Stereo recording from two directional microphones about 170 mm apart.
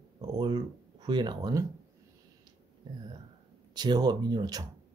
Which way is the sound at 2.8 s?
25° right (ahead or behind).